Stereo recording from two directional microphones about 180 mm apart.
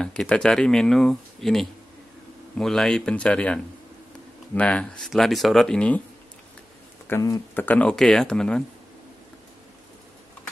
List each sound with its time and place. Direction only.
0.0 s speech: 5° left (ahead or behind)
7.1 s speech: 20° left (ahead or behind)
7.6 s speech: 5° left (ahead or behind)